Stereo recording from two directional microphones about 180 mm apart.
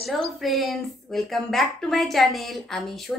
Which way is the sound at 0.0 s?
Centre (ahead or behind).